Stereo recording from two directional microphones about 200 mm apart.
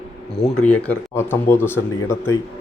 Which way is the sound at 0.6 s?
5° left (ahead or behind).